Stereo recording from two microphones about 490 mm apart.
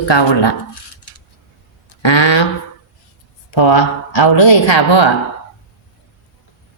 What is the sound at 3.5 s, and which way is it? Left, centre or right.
Speech, left.